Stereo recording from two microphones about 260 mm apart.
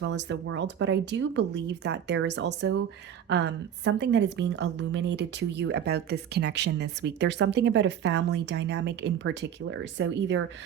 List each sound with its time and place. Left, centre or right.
0.0 s a woman's voice: right